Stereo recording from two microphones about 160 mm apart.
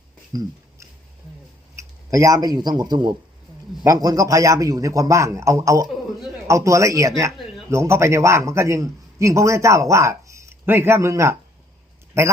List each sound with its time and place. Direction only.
0.3 s a man's voice: 25° right (ahead or behind)
1.7 s a man's voice: 20° right (ahead or behind)